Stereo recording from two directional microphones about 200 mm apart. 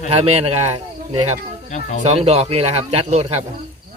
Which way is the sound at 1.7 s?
40° left (ahead or behind).